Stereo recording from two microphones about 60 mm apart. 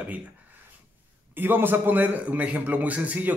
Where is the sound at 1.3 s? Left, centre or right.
Right.